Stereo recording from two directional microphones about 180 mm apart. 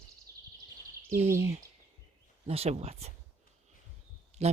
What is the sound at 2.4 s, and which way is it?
Speech, 35° right (ahead or behind).